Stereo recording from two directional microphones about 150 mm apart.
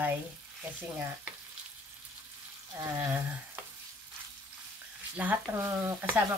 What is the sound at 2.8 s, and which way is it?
Speech, 10° right (ahead or behind).